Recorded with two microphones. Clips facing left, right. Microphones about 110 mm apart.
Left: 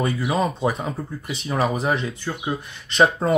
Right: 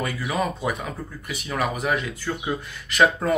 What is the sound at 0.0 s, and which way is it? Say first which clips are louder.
Speech: left 4 dB; 25° left (ahead or behind).